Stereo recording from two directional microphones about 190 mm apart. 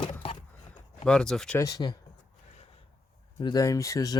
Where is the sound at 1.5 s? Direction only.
20° left (ahead or behind).